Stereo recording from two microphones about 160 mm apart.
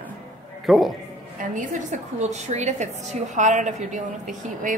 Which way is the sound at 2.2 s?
45° right (ahead or behind).